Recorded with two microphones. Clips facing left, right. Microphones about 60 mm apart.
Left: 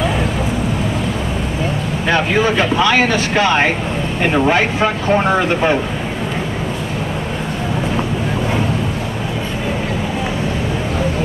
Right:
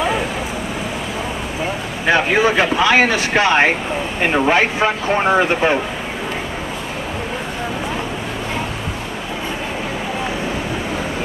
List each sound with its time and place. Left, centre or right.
2.0 s speech: centre